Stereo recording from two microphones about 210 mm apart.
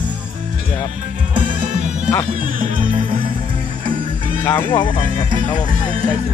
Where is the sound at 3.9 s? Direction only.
40° right (ahead or behind).